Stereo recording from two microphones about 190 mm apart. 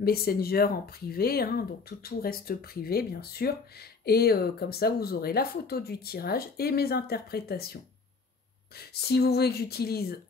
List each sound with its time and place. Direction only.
0.0 s speech: 55° left (ahead or behind)